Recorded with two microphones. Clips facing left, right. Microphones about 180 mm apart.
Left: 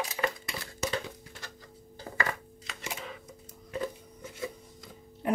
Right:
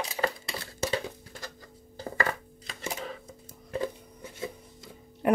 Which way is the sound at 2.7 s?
35° right (ahead or behind).